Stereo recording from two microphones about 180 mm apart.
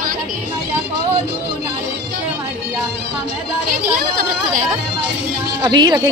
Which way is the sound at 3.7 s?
50° right (ahead or behind).